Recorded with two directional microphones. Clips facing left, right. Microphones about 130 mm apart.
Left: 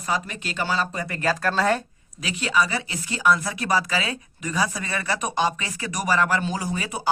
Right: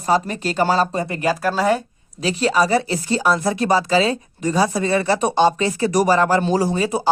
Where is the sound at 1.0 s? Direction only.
20° right (ahead or behind).